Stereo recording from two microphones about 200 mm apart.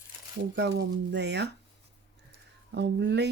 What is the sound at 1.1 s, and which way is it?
Speech, 60° right (ahead or behind).